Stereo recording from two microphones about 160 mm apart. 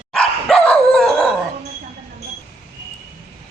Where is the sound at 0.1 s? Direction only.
Centre (ahead or behind).